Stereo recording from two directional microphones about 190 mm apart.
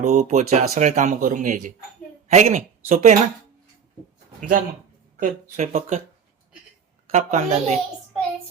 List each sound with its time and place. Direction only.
0.0 s speech: 35° right (ahead or behind)
4.4 s speech: 50° right (ahead or behind)
5.2 s speech: 40° right (ahead or behind)
7.1 s speech: 35° right (ahead or behind)